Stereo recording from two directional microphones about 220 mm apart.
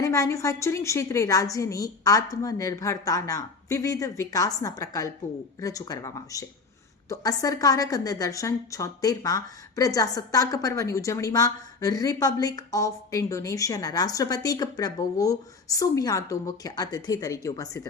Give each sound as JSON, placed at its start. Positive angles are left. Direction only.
{"t": 0.0, "sound": "a woman's voice", "side_deg": 15}